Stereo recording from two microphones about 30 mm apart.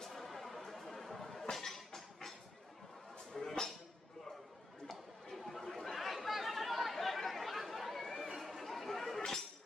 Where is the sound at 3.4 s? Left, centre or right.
Centre.